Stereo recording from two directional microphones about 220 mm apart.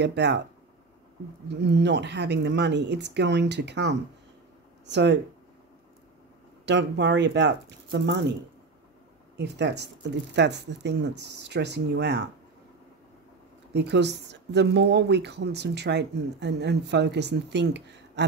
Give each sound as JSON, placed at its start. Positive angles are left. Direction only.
{"t": 0.0, "sound": "speech", "side_deg": -50}
{"t": 1.5, "sound": "speech", "side_deg": -50}
{"t": 6.6, "sound": "speech", "side_deg": -50}
{"t": 9.4, "sound": "speech", "side_deg": -50}
{"t": 13.7, "sound": "speech", "side_deg": -50}